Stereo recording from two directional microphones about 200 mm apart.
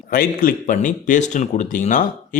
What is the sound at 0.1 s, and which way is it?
Speech, 45° left (ahead or behind).